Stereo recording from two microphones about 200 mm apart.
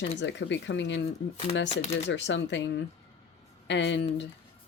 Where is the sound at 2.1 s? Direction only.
65° left (ahead or behind).